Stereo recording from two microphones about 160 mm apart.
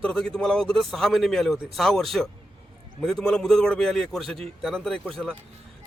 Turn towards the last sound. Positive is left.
turn(degrees=5)  # may be behind; listen again after turning